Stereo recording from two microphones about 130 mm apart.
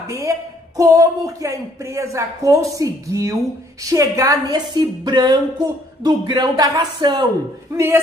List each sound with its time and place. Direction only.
0.0 s a woman's voice: 25° right (ahead or behind)
7.7 s speech: 20° right (ahead or behind)